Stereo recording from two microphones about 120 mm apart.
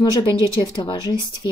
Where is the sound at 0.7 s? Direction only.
40° left (ahead or behind).